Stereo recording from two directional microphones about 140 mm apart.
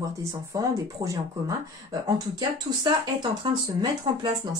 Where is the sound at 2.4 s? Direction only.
35° right (ahead or behind).